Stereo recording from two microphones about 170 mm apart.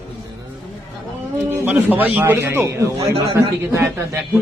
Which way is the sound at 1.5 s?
10° right (ahead or behind).